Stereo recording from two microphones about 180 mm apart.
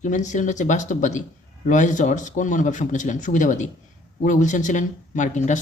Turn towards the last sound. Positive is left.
turn(degrees=45)  # may be behind; listen again after turning